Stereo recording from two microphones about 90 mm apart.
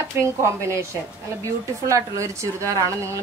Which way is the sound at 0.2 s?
25° right (ahead or behind).